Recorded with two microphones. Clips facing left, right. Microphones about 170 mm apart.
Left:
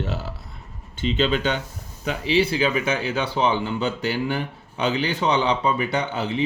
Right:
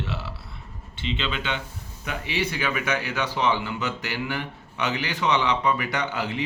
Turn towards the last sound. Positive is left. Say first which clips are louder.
# left 3 dB
turn(degrees=25)  # may be behind; listen again after turning